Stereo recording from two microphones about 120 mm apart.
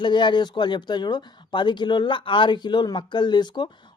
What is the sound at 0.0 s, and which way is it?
Speech, 40° left (ahead or behind).